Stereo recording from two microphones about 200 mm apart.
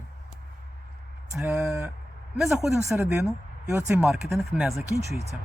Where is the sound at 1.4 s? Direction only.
5° right (ahead or behind).